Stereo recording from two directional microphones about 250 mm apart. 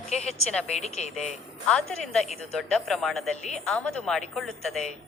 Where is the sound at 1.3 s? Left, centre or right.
Centre.